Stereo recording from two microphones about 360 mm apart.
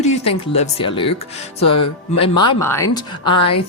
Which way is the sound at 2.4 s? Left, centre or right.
Centre.